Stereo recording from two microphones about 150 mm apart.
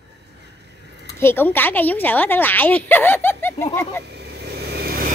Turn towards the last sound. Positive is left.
turn(degrees=-90)